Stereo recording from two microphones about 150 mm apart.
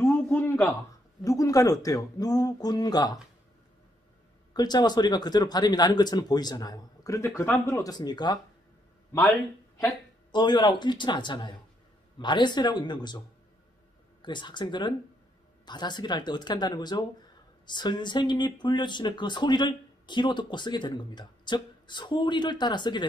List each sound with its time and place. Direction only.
0.0 s a sound: 15° left (ahead or behind)
1.2 s speech: 20° left (ahead or behind)
4.6 s speech: 25° left (ahead or behind)
9.8 s a man's voice: 25° left (ahead or behind)
14.2 s speech: 30° left (ahead or behind)